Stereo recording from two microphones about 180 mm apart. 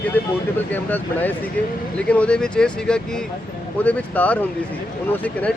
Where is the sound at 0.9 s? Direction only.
10° left (ahead or behind).